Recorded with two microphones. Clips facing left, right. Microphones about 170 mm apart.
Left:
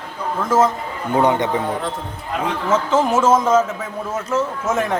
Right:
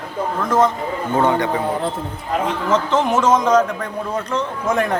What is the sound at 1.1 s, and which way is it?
Speech, 15° left (ahead or behind).